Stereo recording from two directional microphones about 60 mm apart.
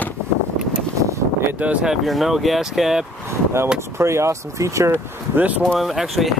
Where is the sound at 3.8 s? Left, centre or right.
Right.